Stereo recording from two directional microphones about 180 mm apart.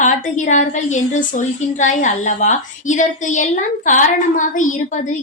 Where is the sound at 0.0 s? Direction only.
45° left (ahead or behind).